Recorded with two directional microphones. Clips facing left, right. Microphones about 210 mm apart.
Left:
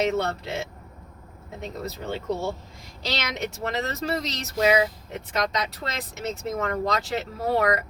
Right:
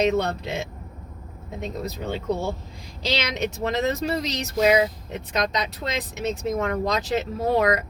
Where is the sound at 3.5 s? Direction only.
20° right (ahead or behind).